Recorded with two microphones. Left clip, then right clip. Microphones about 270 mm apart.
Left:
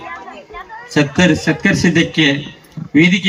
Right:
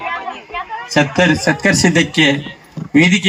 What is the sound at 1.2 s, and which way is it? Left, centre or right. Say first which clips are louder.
A man's voice: right 1 dB; right.